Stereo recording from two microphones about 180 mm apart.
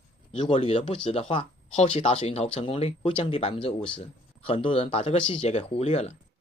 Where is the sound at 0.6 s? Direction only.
35° left (ahead or behind).